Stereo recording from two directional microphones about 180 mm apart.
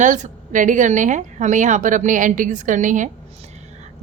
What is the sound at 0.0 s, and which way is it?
A woman's voice, 45° right (ahead or behind).